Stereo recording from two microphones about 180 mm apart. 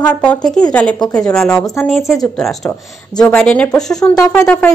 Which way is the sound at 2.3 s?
Centre (ahead or behind).